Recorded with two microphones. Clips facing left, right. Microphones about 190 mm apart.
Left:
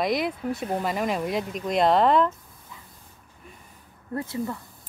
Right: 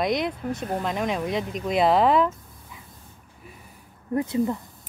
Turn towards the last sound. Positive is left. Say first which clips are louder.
# right 6 dB
turn(degrees=-20)  # may be behind; listen again after turning